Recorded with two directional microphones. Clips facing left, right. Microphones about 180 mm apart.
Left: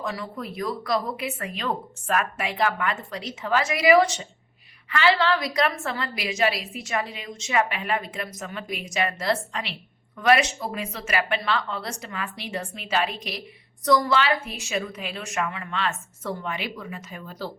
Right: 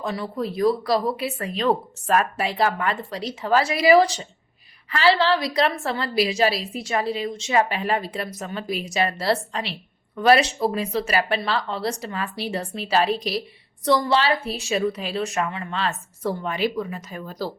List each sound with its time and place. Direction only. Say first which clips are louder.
0.0 s a woman's voice: right 5 dB; 30° right (ahead or behind)